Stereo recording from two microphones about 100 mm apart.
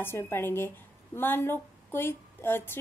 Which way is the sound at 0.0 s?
25° left (ahead or behind).